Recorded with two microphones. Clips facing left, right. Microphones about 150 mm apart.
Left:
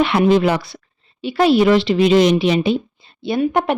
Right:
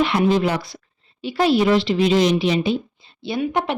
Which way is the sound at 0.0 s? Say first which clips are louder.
Left 4 dB; 70° left (ahead or behind).